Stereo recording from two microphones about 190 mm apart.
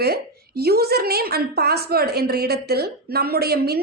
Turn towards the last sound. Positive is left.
turn(degrees=-55)  # may be behind; listen again after turning